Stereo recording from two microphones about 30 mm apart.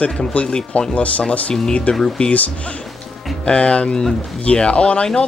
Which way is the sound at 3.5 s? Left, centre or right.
Left.